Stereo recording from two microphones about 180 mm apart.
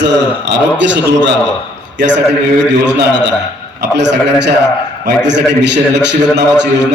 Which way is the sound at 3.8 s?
75° right (ahead or behind).